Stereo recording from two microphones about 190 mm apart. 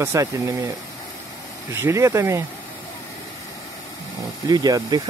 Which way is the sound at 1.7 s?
15° right (ahead or behind).